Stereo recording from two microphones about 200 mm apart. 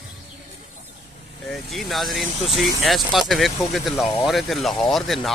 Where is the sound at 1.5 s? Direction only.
Centre (ahead or behind).